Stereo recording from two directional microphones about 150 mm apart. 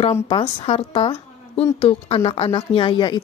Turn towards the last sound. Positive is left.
turn(degrees=30)  # may be behind; listen again after turning